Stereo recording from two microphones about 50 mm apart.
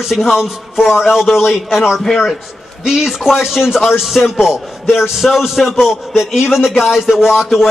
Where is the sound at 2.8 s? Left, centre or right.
Centre.